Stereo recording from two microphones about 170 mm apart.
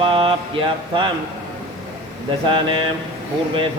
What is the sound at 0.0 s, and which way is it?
Mantra, 30° right (ahead or behind).